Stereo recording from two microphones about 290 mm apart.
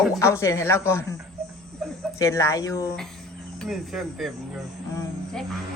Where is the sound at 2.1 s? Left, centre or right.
Centre.